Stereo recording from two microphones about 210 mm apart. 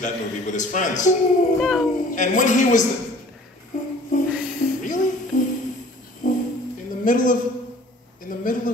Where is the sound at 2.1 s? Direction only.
35° left (ahead or behind).